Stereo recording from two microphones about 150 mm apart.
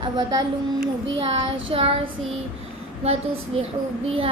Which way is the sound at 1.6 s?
40° right (ahead or behind).